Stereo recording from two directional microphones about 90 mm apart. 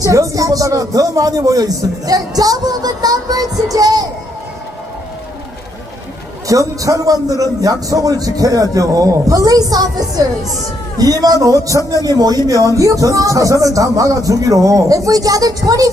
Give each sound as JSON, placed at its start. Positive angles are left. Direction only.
{"t": 0.0, "sound": "a man's voice", "side_deg": -40}
{"t": 6.5, "sound": "a man's voice", "side_deg": -40}